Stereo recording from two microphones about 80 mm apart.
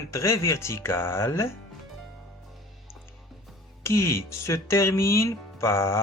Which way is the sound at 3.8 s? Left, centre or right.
Left.